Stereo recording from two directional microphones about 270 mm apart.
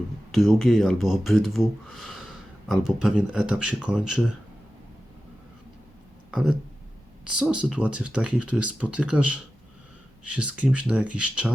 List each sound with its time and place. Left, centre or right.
0.3 s speech: centre
6.3 s speech: centre
10.3 s speech: centre